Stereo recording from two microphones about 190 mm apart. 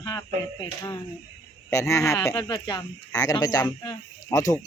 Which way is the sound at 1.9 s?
15° left (ahead or behind).